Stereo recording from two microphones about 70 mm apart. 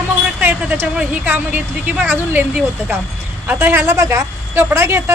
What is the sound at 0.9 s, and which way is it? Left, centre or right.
A woman's voice, right.